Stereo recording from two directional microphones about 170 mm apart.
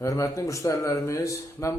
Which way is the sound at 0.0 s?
20° left (ahead or behind).